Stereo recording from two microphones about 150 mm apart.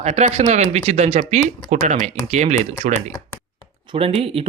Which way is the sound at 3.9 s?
40° right (ahead or behind).